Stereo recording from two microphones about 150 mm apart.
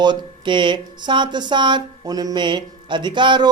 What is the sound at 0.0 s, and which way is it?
Mantra, 30° right (ahead or behind).